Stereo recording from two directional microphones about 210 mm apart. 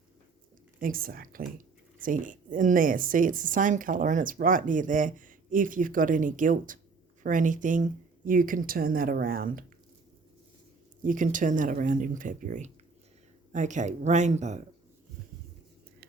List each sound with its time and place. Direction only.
0.8 s speech: 45° right (ahead or behind)
11.0 s speech: 40° right (ahead or behind)